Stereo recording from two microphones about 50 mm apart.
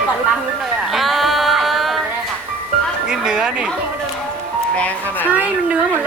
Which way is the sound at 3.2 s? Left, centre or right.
Centre.